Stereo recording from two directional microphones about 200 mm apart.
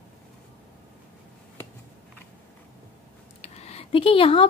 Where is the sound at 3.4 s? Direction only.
30° left (ahead or behind).